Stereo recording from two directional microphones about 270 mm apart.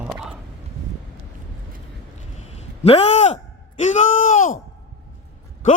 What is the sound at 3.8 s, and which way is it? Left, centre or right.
Speech, left.